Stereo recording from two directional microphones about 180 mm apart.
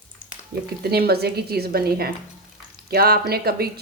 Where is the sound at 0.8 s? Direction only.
60° right (ahead or behind).